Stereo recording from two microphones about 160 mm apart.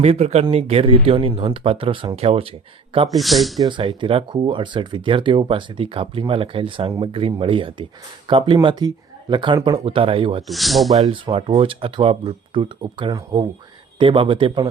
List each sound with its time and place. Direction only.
0.0 s speech: 40° right (ahead or behind)
3.1 s speech: centre (ahead or behind)
3.6 s speech: 30° right (ahead or behind)
10.4 s speech: centre (ahead or behind)
10.9 s speech: 35° right (ahead or behind)